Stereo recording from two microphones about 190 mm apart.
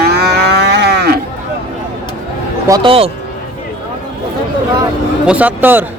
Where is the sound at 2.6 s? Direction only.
25° right (ahead or behind).